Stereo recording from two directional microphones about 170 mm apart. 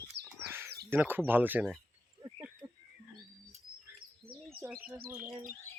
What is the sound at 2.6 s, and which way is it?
Wild animals, 10° right (ahead or behind).